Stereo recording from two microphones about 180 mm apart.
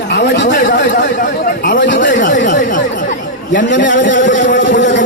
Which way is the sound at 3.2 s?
75° left (ahead or behind).